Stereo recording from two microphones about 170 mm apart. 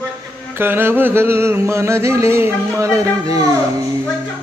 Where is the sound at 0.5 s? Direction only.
15° right (ahead or behind).